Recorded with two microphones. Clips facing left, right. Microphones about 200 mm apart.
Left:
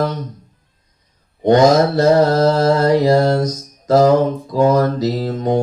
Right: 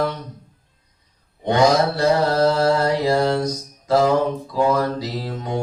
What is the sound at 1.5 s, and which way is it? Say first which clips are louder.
Mantra: left 5 dB; 45° left (ahead or behind).